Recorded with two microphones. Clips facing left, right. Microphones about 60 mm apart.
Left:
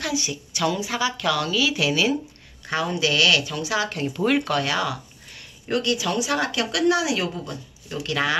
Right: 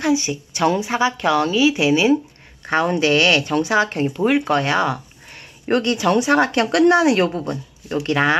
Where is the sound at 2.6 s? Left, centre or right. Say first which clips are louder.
Right 6 dB; right.